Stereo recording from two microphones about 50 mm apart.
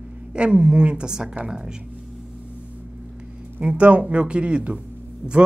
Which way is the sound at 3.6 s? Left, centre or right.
Right.